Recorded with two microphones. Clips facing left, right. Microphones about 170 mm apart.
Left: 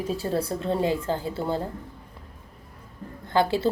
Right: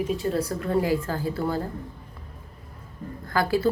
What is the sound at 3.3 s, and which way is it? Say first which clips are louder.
Speech: even; 25° left (ahead or behind).